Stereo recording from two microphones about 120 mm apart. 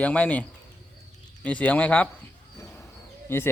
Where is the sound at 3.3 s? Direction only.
15° left (ahead or behind).